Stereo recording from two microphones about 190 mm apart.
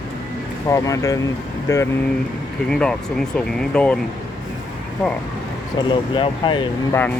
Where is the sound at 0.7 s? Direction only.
15° left (ahead or behind).